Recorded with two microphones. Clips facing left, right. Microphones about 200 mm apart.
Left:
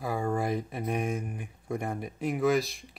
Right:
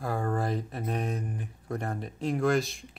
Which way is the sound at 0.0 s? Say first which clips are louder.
Left 1 dB; 10° left (ahead or behind).